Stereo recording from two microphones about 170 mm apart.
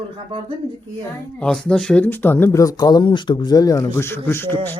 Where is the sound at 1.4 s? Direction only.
5° left (ahead or behind).